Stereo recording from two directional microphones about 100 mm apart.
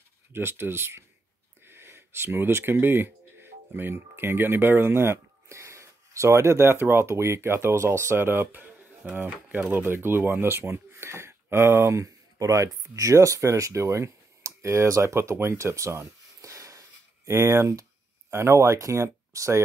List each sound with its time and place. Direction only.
0.3 s speech: 25° right (ahead or behind)